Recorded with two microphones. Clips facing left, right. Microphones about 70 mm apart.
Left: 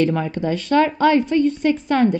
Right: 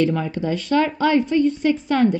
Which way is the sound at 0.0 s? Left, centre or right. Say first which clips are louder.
Left 1 dB; left.